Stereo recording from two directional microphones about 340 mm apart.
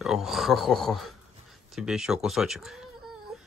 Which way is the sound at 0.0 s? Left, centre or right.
Centre.